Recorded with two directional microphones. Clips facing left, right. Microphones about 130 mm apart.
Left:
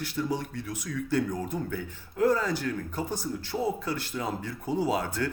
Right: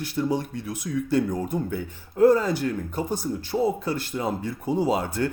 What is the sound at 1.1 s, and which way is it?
Speech, 20° right (ahead or behind).